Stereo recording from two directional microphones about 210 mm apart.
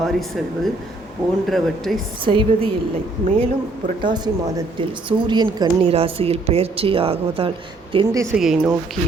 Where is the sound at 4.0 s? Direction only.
20° right (ahead or behind).